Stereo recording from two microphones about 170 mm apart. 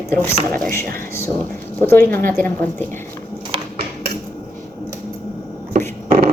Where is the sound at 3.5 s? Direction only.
30° right (ahead or behind).